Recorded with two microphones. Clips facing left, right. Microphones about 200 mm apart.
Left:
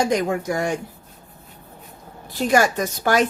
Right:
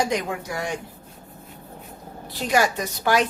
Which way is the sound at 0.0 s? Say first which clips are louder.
Left 4 dB; 45° left (ahead or behind).